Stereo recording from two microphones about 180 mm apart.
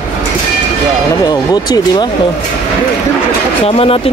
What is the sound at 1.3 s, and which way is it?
Speech, 20° left (ahead or behind).